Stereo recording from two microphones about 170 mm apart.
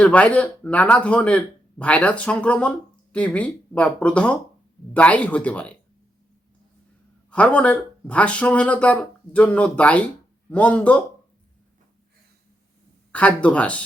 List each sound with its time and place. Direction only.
0.0 s speech: 5° left (ahead or behind)
7.3 s speech: 5° left (ahead or behind)
13.1 s speech: 10° left (ahead or behind)